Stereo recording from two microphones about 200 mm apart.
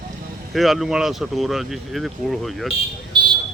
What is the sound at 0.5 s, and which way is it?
Speech, centre (ahead or behind).